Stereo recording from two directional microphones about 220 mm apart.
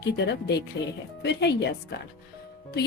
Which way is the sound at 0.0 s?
50° left (ahead or behind).